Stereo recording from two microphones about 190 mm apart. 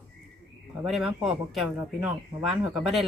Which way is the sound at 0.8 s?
Centre (ahead or behind).